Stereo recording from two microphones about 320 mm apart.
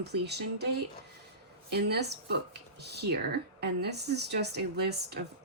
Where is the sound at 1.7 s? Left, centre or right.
Right.